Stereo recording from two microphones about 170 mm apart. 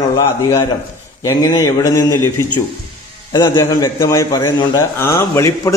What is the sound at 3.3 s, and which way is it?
A man's voice, 25° left (ahead or behind).